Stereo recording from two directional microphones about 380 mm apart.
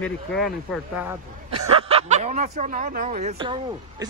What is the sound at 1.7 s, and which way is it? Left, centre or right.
Speech, centre.